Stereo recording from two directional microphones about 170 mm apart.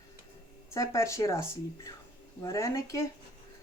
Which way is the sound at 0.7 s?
15° left (ahead or behind).